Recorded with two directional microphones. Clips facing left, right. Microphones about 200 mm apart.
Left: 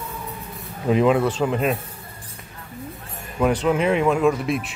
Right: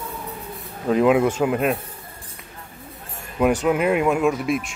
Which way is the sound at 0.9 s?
Centre (ahead or behind).